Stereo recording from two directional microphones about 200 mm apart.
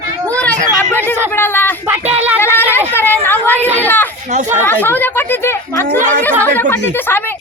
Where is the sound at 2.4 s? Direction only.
10° left (ahead or behind).